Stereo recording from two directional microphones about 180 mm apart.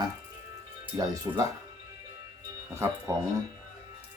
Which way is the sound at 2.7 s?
15° right (ahead or behind).